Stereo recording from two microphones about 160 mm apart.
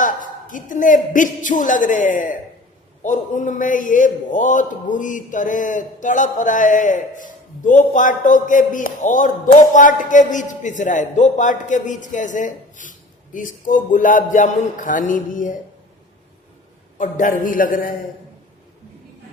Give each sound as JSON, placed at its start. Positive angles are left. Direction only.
{"t": 0.0, "sound": "a man's voice", "side_deg": 55}
{"t": 17.0, "sound": "a man's voice", "side_deg": 55}